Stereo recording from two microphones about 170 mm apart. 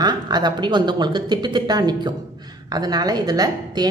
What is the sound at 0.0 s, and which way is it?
Speech, 25° right (ahead or behind).